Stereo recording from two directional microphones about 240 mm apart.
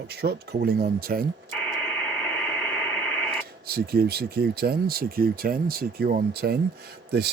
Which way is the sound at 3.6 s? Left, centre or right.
Right.